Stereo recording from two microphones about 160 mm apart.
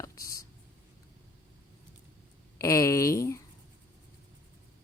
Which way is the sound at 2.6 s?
20° left (ahead or behind).